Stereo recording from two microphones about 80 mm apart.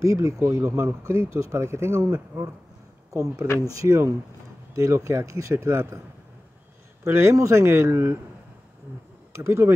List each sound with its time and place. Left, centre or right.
0.0 s speech: right
7.1 s speech: right
9.3 s speech: right